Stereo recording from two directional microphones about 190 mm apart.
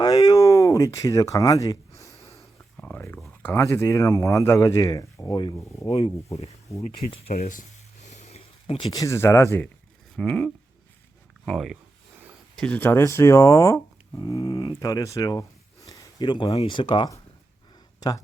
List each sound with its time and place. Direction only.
0.0 s a sound: 20° left (ahead or behind)
3.4 s speech: 15° left (ahead or behind)
5.9 s speech: 30° left (ahead or behind)
7.3 s speech: 45° left (ahead or behind)
8.0 s a sound: 35° left (ahead or behind); by 9.6 s 10° left (ahead or behind)
10.2 s speech: 5° left (ahead or behind); by 17.2 s 25° left (ahead or behind)